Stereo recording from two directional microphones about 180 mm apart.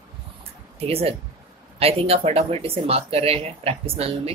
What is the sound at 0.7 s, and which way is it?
A woman's voice, 35° right (ahead or behind).